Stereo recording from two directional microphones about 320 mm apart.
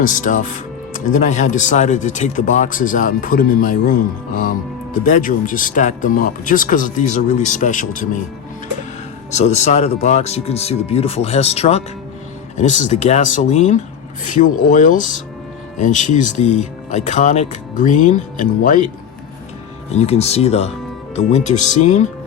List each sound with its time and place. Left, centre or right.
0.0 s speech: left
9.3 s speech: left
19.9 s speech: centre